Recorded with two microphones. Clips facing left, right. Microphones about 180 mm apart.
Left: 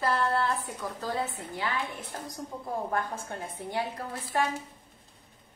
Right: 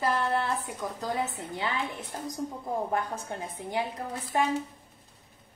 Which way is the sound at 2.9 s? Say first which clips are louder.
Right 1 dB; 20° right (ahead or behind).